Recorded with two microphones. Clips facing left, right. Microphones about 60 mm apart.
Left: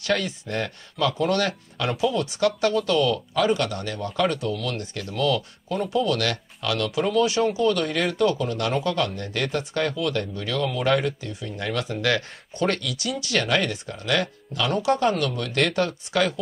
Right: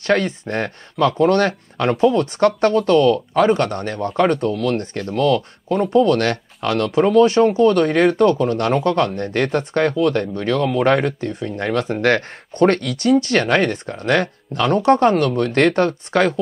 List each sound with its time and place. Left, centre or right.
0.0 s speech: right